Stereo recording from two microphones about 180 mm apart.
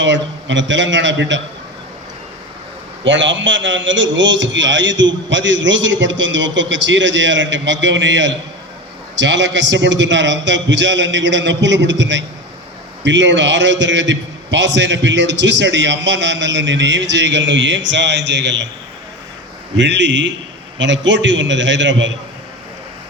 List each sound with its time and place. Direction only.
0.0 s a man's voice: 90° right
3.0 s a man's voice: 90° right; by 18.7 s 75° right (ahead or behind)
19.7 s a man's voice: 85° right